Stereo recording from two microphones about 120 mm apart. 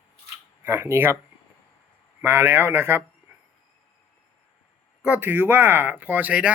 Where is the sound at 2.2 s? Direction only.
20° right (ahead or behind).